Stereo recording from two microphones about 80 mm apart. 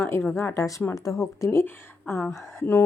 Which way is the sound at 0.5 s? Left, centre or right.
Left.